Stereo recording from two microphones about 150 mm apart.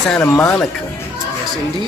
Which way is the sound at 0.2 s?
10° left (ahead or behind).